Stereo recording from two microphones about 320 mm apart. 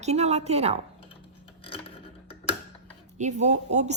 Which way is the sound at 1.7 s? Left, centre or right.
Centre.